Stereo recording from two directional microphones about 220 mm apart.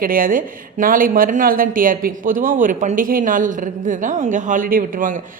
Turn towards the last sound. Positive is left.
turn(degrees=-35)  # may be behind; listen again after turning